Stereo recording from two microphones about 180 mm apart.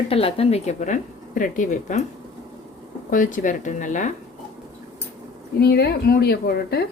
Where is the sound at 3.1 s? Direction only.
45° left (ahead or behind).